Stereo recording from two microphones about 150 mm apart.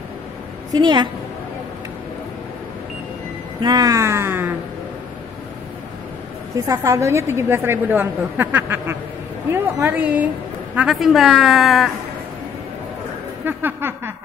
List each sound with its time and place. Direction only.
0.7 s speech: 30° right (ahead or behind)
3.6 s speech: 25° right (ahead or behind)
6.5 s a woman's voice: 20° right (ahead or behind); by 11.9 s centre (ahead or behind)
13.5 s a woman's voice: 15° right (ahead or behind)